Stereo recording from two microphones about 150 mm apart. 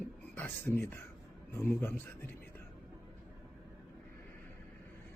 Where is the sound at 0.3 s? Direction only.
15° left (ahead or behind).